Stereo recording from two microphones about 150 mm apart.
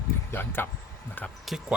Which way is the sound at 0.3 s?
15° left (ahead or behind).